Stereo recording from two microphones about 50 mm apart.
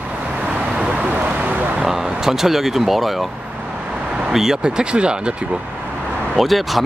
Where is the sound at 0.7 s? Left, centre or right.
Centre.